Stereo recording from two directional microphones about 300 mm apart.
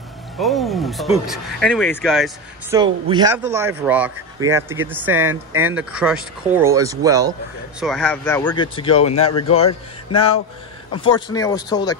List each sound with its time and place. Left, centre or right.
0.4 s speech: centre
2.8 s speech: centre
7.8 s speech: centre
8.7 s speech: centre
10.9 s speech: centre